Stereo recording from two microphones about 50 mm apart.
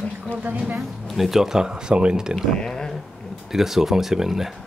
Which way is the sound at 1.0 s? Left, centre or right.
Centre.